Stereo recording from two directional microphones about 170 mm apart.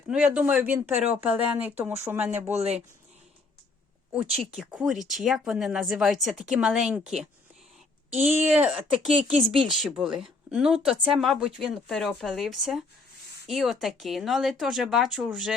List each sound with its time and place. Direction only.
0.1 s speech: 5° right (ahead or behind)
2.5 s speech: 40° right (ahead or behind)
4.1 s speech: 5° right (ahead or behind)
8.4 s speech: 10° right (ahead or behind)